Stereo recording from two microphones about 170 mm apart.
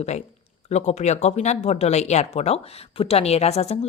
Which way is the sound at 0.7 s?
40° left (ahead or behind).